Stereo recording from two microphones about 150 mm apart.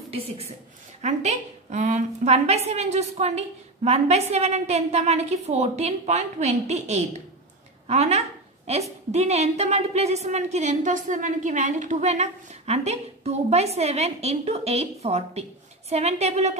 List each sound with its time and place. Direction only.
1.0 s a woman's voice: 50° right (ahead or behind)